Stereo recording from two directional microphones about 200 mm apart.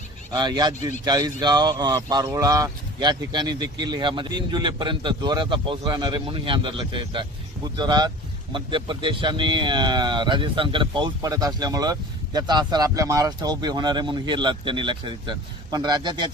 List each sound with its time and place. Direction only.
0.3 s speech: 20° right (ahead or behind)